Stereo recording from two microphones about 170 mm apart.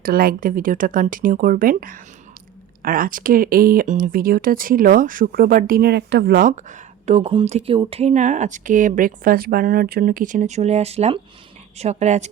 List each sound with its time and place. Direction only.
0.0 s speech: 60° right (ahead or behind); by 12.3 s 40° right (ahead or behind)